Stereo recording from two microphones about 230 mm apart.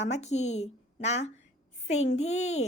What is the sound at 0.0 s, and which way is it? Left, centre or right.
A woman's voice, left.